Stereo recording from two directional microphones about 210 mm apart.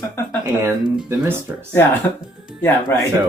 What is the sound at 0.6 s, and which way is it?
Speech, 10° right (ahead or behind).